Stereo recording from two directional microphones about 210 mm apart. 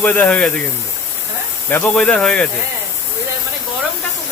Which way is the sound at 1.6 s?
10° left (ahead or behind).